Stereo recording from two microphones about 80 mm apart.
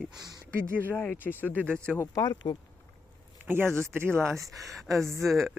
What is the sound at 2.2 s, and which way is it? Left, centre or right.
Speech, left.